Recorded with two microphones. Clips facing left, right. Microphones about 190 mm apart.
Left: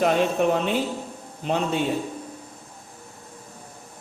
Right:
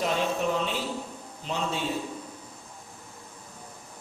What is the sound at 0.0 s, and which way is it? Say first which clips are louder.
A man's voice: left 7 dB; 60° left (ahead or behind).